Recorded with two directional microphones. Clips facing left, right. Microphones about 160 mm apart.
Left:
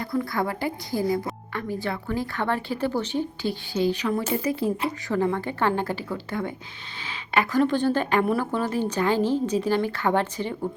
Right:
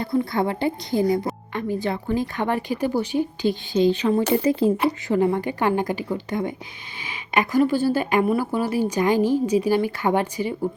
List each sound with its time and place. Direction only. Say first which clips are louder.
0.0 s a woman's voice: right 4 dB; 25° right (ahead or behind)
4.2 s speech: right 6 dB; 75° right (ahead or behind)
5.0 s speech: right 2 dB; 15° right (ahead or behind)